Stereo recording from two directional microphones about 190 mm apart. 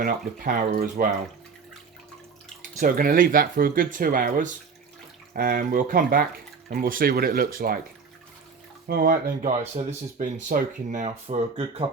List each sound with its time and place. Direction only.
0.0 s speech: 50° right (ahead or behind)
2.8 s speech: 50° right (ahead or behind)
8.9 s speech: 55° right (ahead or behind); by 11.9 s 35° right (ahead or behind)